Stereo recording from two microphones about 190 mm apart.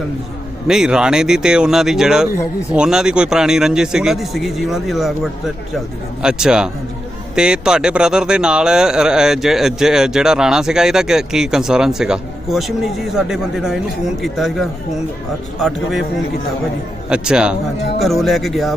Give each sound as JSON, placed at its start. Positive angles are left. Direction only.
{"t": 0.7, "sound": "speech", "side_deg": -5}
{"t": 17.1, "sound": "speech", "side_deg": -5}